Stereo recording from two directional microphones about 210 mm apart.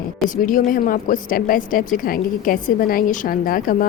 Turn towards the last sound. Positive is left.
turn(degrees=40)  # may be behind; listen again after turning